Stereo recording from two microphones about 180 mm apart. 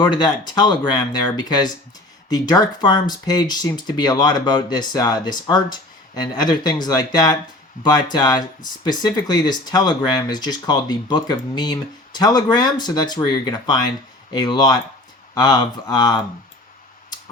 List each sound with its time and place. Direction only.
0.0 s speech: 25° left (ahead or behind)